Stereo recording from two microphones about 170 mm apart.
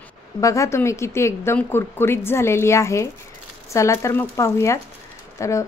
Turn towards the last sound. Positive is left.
turn(degrees=15)  # may be behind; listen again after turning